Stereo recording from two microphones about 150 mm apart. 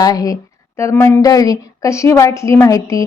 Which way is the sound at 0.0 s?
25° left (ahead or behind).